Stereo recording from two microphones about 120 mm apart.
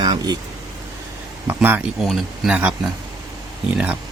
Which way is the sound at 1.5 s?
15° right (ahead or behind).